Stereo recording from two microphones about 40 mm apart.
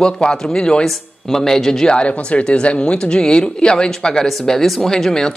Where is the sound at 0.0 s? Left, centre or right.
Centre.